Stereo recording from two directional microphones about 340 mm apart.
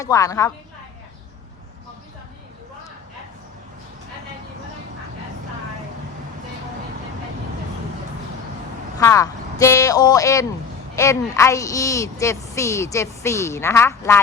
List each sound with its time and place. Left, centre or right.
0.0 s a woman's voice: centre
9.0 s a woman's voice: centre